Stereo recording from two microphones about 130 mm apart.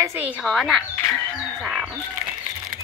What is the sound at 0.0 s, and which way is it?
Speech, 20° right (ahead or behind).